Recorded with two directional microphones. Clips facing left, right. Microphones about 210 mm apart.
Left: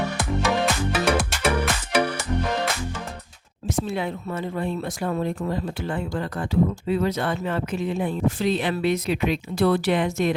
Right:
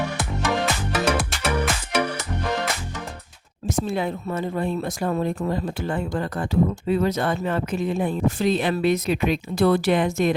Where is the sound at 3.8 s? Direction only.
40° right (ahead or behind).